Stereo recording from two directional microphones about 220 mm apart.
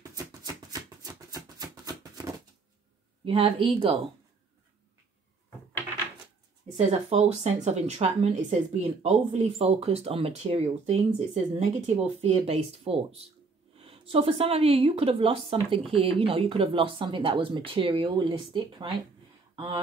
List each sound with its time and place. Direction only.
0.0 s a sound: 15° right (ahead or behind)
3.3 s speech: 25° right (ahead or behind)
6.9 s speech: 30° right (ahead or behind)